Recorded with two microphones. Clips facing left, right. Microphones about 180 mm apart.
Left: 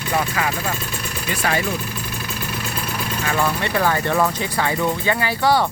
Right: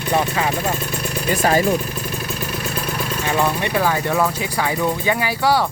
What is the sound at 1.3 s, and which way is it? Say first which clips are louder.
Speech: right 5 dB; 40° right (ahead or behind).